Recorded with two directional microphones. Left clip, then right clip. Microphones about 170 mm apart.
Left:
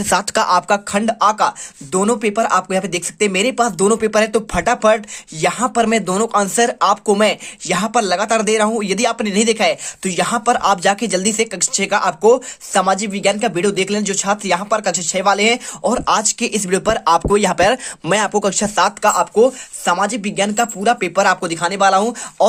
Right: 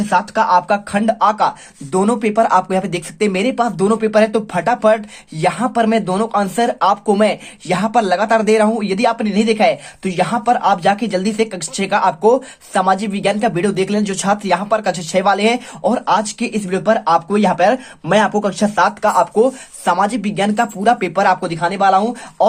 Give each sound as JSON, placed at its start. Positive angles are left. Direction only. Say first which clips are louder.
{"t": 0.1, "sound": "speech", "louder": "right 1 dB", "side_deg": 50}
{"t": 0.9, "sound": "speech", "louder": "right 1 dB", "side_deg": 25}